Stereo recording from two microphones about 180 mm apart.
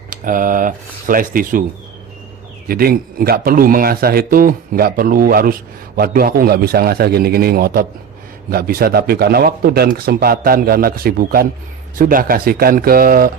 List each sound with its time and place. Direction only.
0.1 s speech: 50° right (ahead or behind)
2.6 s a man's voice: 55° right (ahead or behind)